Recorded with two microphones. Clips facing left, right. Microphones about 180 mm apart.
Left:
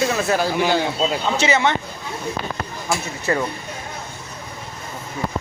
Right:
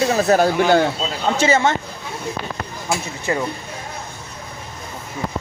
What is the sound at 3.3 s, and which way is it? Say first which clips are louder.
Speech: left 1 dB; 20° right (ahead or behind).